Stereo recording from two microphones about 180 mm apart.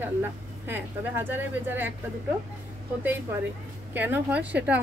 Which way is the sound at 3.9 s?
10° right (ahead or behind).